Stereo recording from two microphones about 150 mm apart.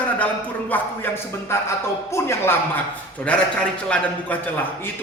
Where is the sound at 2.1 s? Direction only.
15° left (ahead or behind).